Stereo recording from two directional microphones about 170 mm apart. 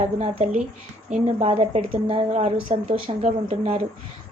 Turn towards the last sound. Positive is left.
turn(degrees=-35)  # may be behind; listen again after turning